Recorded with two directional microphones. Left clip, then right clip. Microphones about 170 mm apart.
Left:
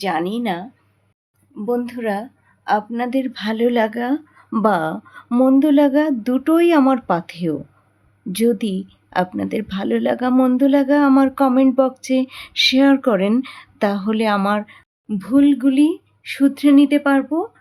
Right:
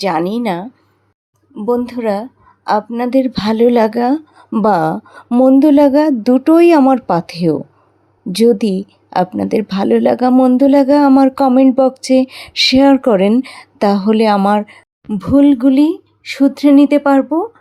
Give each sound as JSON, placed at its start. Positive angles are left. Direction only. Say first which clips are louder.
{"t": 0.0, "sound": "a woman's voice", "louder": "right 5 dB", "side_deg": -30}
{"t": 5.3, "sound": "speech", "louder": "right 6 dB", "side_deg": -5}
{"t": 5.5, "sound": "a woman's voice", "louder": "right 5 dB", "side_deg": -25}
{"t": 10.3, "sound": "a sound", "louder": "right 6 dB", "side_deg": -10}
{"t": 10.6, "sound": "a woman's voice", "louder": "right 6 dB", "side_deg": -25}